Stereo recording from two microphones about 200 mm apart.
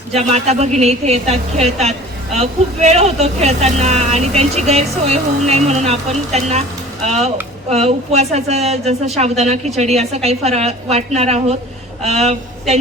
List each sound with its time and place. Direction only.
0.1 s a woman's voice: 35° right (ahead or behind)